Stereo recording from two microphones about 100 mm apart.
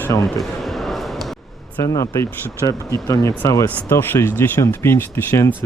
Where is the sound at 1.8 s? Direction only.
30° left (ahead or behind).